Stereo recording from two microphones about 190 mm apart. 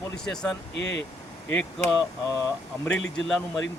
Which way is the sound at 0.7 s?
70° left (ahead or behind).